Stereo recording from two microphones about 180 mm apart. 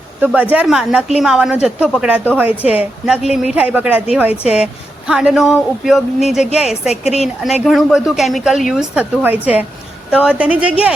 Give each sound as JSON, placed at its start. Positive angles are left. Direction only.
{"t": 0.2, "sound": "a woman's voice", "side_deg": -10}